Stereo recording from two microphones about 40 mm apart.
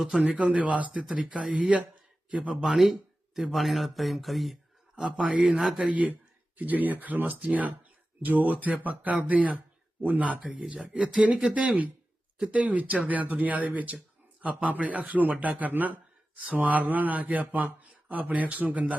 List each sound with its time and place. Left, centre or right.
0.2 s speech: right
1.1 s a man's voice: right
2.6 s speech: centre
4.9 s a man's voice: right
5.4 s speech: centre
5.9 s speech: right
12.4 s speech: right